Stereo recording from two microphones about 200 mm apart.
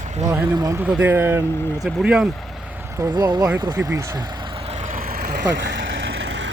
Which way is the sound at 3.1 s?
20° right (ahead or behind).